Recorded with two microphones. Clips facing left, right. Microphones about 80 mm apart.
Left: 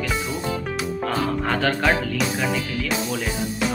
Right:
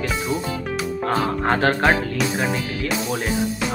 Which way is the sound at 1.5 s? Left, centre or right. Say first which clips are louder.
Right 4 dB; right.